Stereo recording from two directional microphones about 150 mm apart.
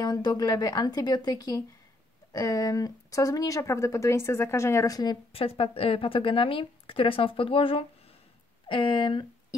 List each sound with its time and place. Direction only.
0.0 s speech: 25° left (ahead or behind)